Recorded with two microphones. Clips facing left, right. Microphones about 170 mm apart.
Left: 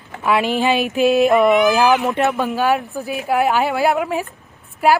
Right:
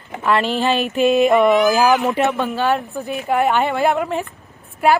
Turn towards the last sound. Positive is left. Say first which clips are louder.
# even
turn(degrees=5)  # may be behind; listen again after turning